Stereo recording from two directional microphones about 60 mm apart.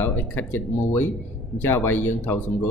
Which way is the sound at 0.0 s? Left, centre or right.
Left.